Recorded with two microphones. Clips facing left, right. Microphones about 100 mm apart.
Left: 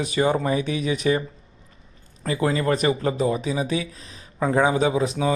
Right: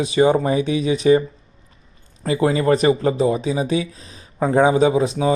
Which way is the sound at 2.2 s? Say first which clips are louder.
Right 5 dB; 25° right (ahead or behind).